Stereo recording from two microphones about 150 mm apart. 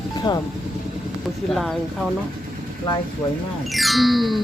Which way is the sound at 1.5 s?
Centre (ahead or behind).